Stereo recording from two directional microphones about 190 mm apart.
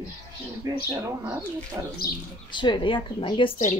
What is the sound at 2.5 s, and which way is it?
Speech, 25° left (ahead or behind).